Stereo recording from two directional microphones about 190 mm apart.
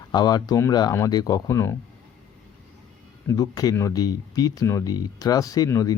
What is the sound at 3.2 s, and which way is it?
Speech, 20° left (ahead or behind).